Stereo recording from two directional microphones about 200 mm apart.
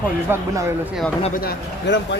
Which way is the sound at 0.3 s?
15° right (ahead or behind).